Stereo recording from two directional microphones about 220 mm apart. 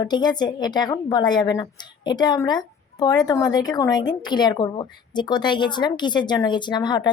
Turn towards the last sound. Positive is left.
turn(degrees=20)  # may be behind; listen again after turning